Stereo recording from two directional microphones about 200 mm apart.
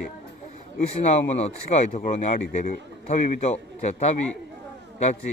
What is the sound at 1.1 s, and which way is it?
Speech, 35° left (ahead or behind).